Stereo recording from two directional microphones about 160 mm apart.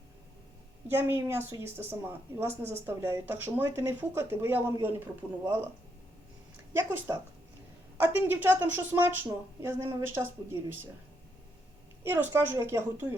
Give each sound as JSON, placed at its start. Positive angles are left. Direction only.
{"t": 0.9, "sound": "a woman's voice", "side_deg": -15}
{"t": 6.7, "sound": "a woman's voice", "side_deg": -15}
{"t": 12.0, "sound": "a woman's voice", "side_deg": -10}